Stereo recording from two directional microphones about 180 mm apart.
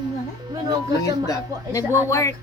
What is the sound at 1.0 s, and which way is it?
Speech, 20° left (ahead or behind).